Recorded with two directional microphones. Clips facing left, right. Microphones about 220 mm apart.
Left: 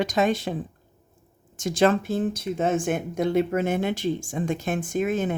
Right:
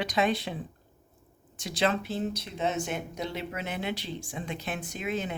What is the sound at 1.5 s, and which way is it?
Speech, 45° left (ahead or behind).